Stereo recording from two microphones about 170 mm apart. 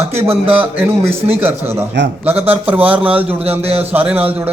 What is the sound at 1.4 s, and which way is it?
Speech, 15° right (ahead or behind).